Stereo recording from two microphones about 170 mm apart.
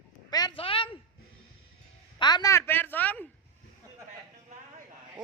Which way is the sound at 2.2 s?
25° left (ahead or behind).